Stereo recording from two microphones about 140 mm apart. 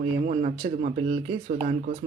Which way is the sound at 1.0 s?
40° right (ahead or behind).